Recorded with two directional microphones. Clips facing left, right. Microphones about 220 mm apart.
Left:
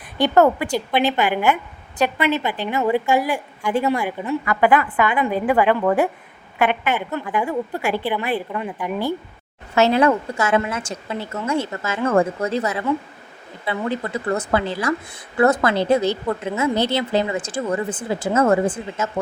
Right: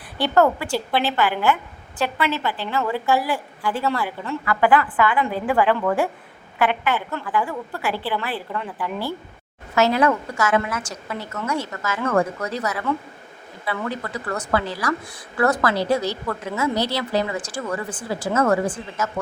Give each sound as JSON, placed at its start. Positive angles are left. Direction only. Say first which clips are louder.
{"t": 0.2, "sound": "a woman's voice", "louder": "left 3 dB", "side_deg": 20}